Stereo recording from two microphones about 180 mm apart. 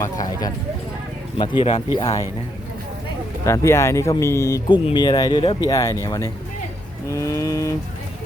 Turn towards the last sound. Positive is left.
turn(degrees=20)  # may be behind; listen again after turning